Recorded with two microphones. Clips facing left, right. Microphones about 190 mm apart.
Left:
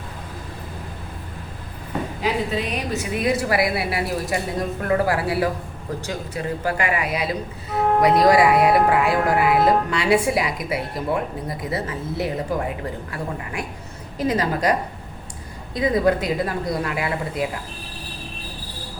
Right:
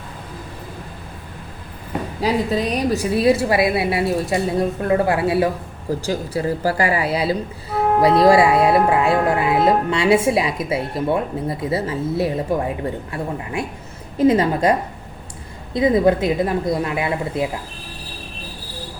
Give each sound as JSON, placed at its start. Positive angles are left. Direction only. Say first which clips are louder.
{"t": 2.2, "sound": "speech", "louder": "right 5 dB", "side_deg": -40}